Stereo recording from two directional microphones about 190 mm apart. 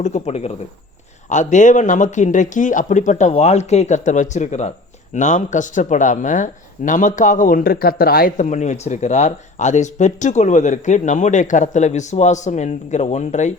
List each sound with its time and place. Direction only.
0.0 s speech: 35° left (ahead or behind)